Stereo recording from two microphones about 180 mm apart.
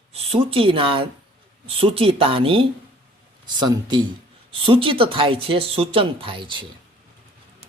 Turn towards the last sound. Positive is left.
turn(degrees=-25)  # may be behind; listen again after turning